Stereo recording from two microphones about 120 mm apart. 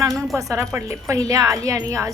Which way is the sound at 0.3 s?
25° right (ahead or behind).